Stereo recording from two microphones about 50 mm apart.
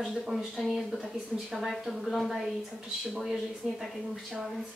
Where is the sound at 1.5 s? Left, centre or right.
Centre.